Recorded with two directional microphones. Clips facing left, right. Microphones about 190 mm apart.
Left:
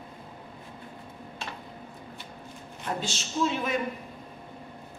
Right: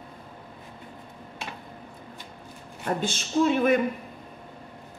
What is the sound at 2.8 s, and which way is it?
A woman's voice, 55° right (ahead or behind).